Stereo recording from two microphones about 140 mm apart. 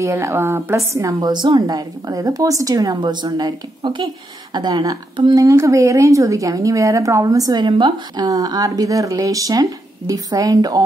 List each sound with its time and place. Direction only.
0.0 s a woman's voice: 20° right (ahead or behind)